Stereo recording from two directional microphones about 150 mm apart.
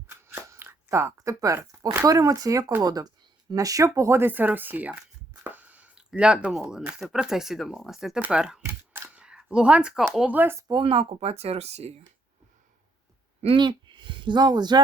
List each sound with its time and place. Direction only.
0.1 s speech: 15° right (ahead or behind)
8.6 s camera: 10° right (ahead or behind)
10.2 s speech: 10° right (ahead or behind)
10.7 s speech: 35° right (ahead or behind)
13.4 s speech: 35° right (ahead or behind)